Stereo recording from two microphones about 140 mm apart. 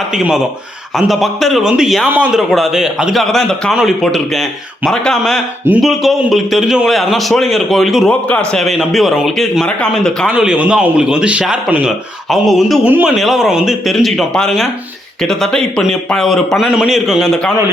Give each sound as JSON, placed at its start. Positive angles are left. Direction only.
{"t": 0.1, "sound": "a man's voice", "side_deg": -5}
{"t": 10.3, "sound": "a man's voice", "side_deg": -5}